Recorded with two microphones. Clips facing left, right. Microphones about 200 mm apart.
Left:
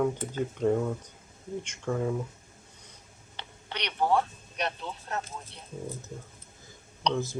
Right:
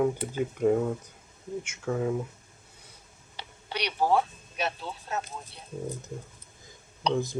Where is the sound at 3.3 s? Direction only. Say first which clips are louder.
Right 3 dB; 10° right (ahead or behind).